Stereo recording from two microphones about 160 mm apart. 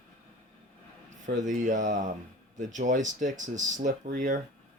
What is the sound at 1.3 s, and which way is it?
Speech, 50° right (ahead or behind).